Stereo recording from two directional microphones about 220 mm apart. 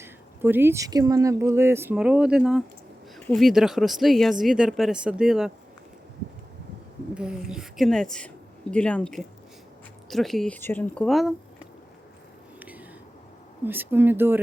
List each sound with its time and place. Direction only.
0.0 s speech: 10° right (ahead or behind)
7.1 s speech: 5° right (ahead or behind)
12.5 s a sound: 5° right (ahead or behind)
13.7 s speech: 10° right (ahead or behind)